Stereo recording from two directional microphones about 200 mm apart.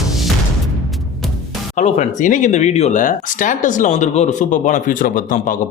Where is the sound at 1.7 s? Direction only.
35° left (ahead or behind).